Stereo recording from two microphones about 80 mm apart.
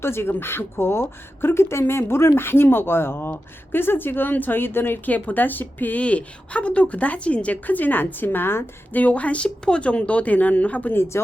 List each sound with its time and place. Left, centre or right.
0.0 s speech: left